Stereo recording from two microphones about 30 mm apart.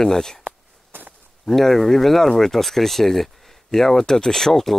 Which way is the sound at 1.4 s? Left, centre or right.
Centre.